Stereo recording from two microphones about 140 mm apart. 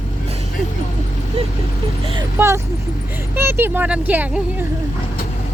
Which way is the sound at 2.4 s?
20° right (ahead or behind).